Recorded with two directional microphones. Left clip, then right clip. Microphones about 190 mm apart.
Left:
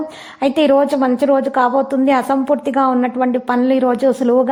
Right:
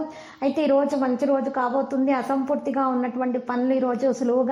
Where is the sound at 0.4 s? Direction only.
40° left (ahead or behind).